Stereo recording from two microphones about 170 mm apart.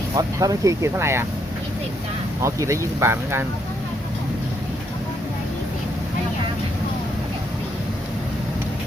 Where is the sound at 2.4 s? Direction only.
15° right (ahead or behind).